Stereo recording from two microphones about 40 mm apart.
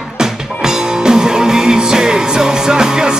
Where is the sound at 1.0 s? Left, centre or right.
Centre.